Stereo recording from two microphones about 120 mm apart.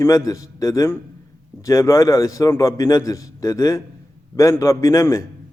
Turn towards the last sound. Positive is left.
turn(degrees=25)  # may be behind; listen again after turning